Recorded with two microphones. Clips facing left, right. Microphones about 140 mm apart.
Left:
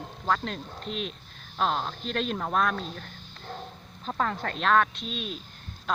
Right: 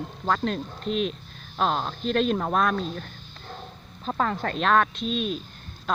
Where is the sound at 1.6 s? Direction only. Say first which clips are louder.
Right 2 dB; 35° right (ahead or behind).